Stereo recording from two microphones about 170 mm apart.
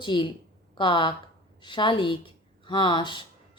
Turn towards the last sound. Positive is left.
turn(degrees=30)  # may be behind; listen again after turning